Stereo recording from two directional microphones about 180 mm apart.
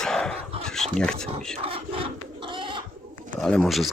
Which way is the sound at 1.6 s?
30° right (ahead or behind).